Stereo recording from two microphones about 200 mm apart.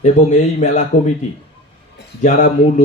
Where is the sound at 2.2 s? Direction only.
40° left (ahead or behind).